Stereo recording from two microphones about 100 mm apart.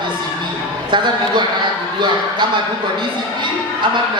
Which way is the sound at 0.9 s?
50° right (ahead or behind).